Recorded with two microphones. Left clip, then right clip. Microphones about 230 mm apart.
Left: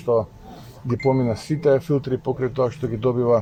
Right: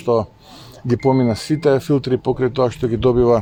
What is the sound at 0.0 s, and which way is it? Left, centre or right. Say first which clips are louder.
Speech: right 3 dB; right.